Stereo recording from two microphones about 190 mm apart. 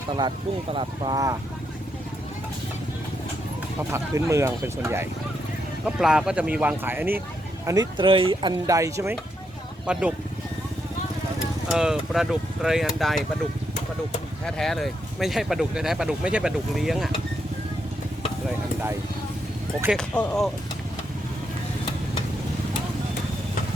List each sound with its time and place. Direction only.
0.2 s speech: 25° right (ahead or behind)
3.9 s speech: 15° right (ahead or behind)
9.8 s speech: 5° right (ahead or behind)
11.7 s speech: 5° right (ahead or behind)
14.4 s speech: centre (ahead or behind)
20.0 s speech: 5° left (ahead or behind)